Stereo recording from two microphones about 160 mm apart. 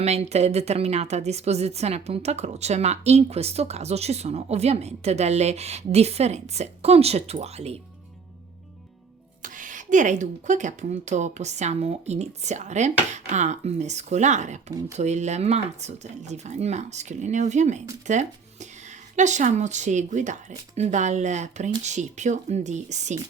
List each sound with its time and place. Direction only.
0.0 s a woman's voice: 40° right (ahead or behind)
9.4 s a woman's voice: 55° right (ahead or behind)